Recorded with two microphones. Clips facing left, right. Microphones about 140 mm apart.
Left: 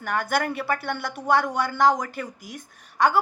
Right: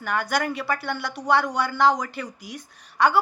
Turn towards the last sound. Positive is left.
turn(degrees=45)  # may be behind; listen again after turning